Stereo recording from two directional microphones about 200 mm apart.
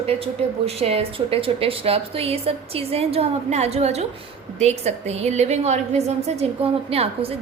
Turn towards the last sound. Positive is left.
turn(degrees=-30)  # may be behind; listen again after turning